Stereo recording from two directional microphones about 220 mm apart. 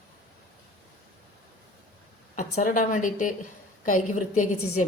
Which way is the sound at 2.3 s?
35° left (ahead or behind).